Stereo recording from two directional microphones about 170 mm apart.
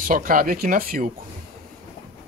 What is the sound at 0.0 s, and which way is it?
Speech, 55° right (ahead or behind).